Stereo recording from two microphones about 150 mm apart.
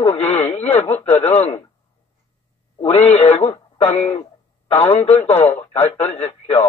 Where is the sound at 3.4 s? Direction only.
45° left (ahead or behind).